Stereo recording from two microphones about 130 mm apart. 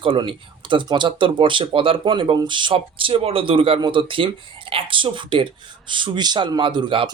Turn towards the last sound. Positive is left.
turn(degrees=-40)  # may be behind; listen again after turning